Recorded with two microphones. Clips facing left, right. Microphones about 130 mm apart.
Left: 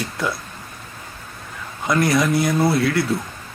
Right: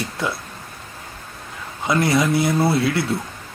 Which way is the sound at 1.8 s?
25° right (ahead or behind).